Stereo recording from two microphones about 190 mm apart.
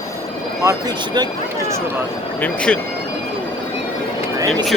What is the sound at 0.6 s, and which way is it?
Speech, 20° right (ahead or behind).